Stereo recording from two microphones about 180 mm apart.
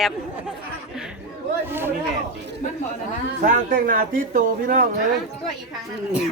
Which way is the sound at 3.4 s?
50° right (ahead or behind).